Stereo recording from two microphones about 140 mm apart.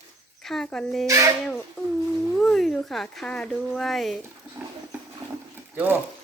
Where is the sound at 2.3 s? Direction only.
5° left (ahead or behind).